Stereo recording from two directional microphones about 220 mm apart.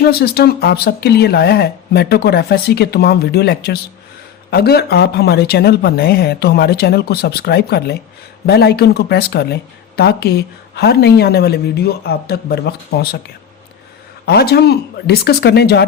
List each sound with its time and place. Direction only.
0.0 s speech: 45° left (ahead or behind)
14.3 s speech: 45° left (ahead or behind)